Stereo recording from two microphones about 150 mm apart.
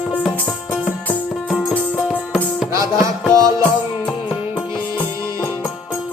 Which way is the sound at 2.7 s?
20° right (ahead or behind).